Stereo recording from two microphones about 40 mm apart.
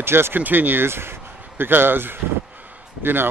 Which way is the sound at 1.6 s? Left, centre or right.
Right.